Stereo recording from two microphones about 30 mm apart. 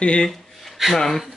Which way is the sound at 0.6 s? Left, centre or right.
Centre.